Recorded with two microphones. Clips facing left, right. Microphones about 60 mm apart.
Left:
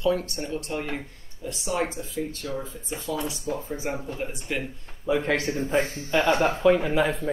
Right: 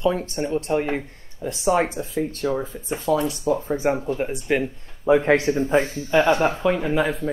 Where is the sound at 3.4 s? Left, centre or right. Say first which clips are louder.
Right 9 dB; right.